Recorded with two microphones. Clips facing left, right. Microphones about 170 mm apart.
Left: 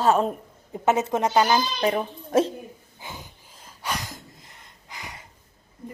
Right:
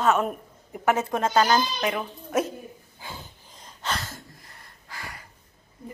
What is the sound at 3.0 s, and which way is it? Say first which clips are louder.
Snort: left 1 dB; 15° left (ahead or behind).